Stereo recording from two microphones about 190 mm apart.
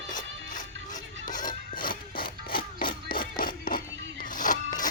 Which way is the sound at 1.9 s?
50° left (ahead or behind).